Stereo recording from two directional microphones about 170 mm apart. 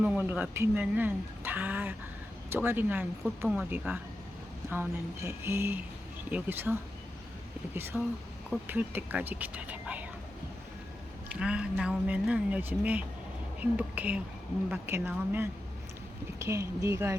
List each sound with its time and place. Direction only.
0.0 s speech: 10° right (ahead or behind)
11.3 s speech: 5° right (ahead or behind)